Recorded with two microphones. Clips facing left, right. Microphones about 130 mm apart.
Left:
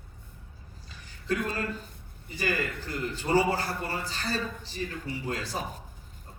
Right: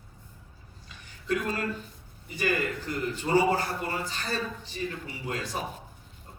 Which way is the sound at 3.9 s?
35° left (ahead or behind).